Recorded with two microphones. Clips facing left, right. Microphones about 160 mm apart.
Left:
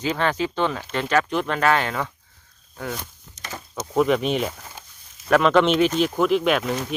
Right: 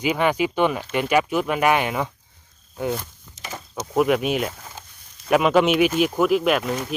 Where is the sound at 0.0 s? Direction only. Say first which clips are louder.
Right 2 dB; 10° right (ahead or behind).